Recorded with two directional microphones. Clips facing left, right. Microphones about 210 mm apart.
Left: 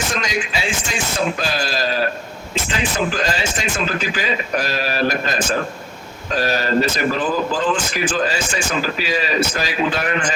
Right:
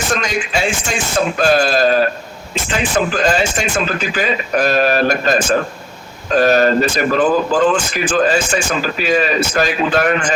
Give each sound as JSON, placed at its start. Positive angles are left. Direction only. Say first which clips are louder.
{"t": 0.2, "sound": "a man's voice", "louder": "right 4 dB", "side_deg": -50}
{"t": 3.2, "sound": "a man's voice", "louder": "right 6 dB", "side_deg": -50}